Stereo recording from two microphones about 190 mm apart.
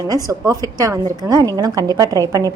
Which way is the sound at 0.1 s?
20° right (ahead or behind).